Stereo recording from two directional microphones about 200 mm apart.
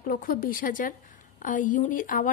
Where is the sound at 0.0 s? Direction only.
45° left (ahead or behind).